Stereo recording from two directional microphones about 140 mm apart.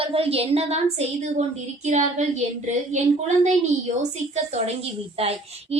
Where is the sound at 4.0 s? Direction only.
55° right (ahead or behind).